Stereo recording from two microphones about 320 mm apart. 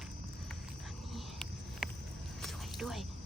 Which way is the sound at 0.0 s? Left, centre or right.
Centre.